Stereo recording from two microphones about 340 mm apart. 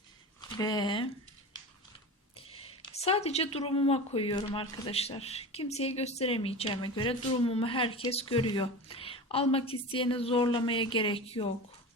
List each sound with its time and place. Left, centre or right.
0.4 s speech: centre
2.5 s speech: centre